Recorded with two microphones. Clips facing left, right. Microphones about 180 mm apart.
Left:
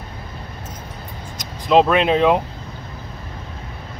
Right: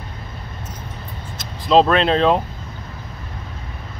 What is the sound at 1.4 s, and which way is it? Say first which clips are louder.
Speech: even; 15° left (ahead or behind).